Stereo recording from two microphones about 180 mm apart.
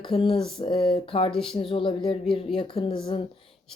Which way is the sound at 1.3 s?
Centre (ahead or behind).